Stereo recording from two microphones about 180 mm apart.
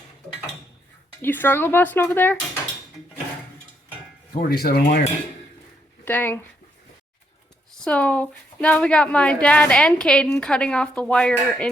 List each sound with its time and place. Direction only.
1.2 s speech: 10° left (ahead or behind)
4.4 s speech: 60° left (ahead or behind)
6.1 s speech: 10° left (ahead or behind)
7.9 s speech: 5° left (ahead or behind)